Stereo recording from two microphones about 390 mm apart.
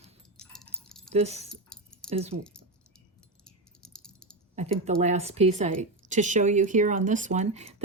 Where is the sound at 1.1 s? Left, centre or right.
Centre.